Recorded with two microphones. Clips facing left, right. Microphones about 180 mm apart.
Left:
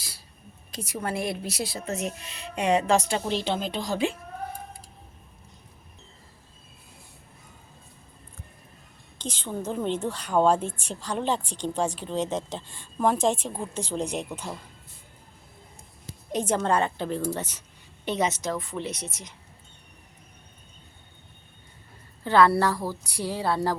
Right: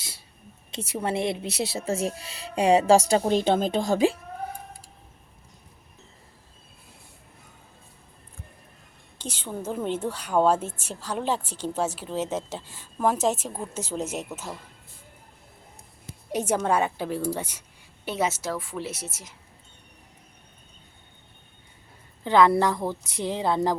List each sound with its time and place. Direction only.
0.7 s speech: 25° right (ahead or behind)
9.1 s a woman's voice: 10° right (ahead or behind)
16.3 s a woman's voice: 10° right (ahead or behind)
22.2 s speech: 15° right (ahead or behind)